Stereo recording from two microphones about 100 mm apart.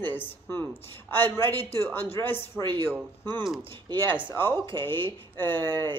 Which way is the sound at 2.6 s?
10° left (ahead or behind).